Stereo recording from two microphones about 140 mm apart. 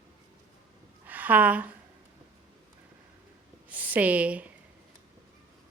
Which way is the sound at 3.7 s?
10° right (ahead or behind).